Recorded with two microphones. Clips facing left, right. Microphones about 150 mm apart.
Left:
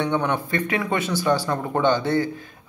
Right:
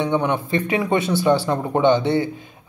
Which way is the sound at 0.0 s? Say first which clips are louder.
Right 2 dB; 20° right (ahead or behind).